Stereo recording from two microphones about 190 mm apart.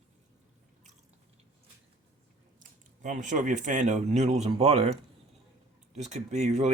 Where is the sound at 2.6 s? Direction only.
40° right (ahead or behind).